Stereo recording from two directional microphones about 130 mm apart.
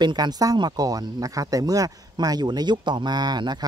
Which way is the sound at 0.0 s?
30° right (ahead or behind).